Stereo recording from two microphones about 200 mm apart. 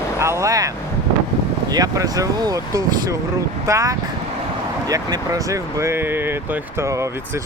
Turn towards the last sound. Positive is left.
turn(degrees=-15)  # may be behind; listen again after turning